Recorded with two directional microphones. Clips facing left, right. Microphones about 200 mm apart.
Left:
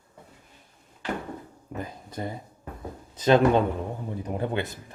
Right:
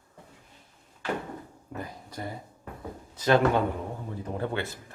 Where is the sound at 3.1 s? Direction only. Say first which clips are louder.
Left 3 dB; 20° left (ahead or behind).